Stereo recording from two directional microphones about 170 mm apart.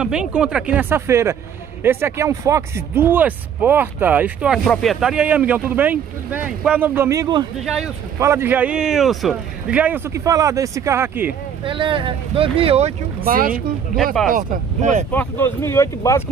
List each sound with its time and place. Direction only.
0.0 s speech: 5° right (ahead or behind); by 7.4 s 25° right (ahead or behind)
7.6 s speech: centre (ahead or behind)
8.2 s speech: 15° right (ahead or behind)
11.6 s speech: 30° right (ahead or behind)
13.2 s speech: 60° right (ahead or behind)
14.3 s speech: 45° right (ahead or behind)
15.1 s speech: 15° left (ahead or behind)